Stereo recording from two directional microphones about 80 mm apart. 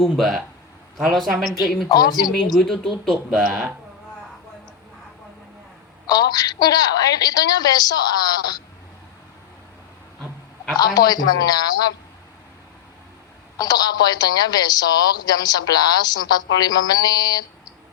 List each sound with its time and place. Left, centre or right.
0.0 s speech: centre
1.9 s a woman's voice: left
2.6 s speech: centre
6.1 s a woman's voice: left
10.8 s a woman's voice: left
13.6 s a woman's voice: left